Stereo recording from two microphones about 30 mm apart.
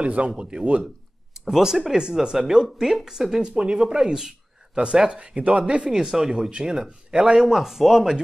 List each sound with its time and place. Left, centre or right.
0.0 s speech: right
0.4 s speech: right
1.6 s speech: centre
5.0 s speech: right
5.9 s speech: centre
7.4 s speech: centre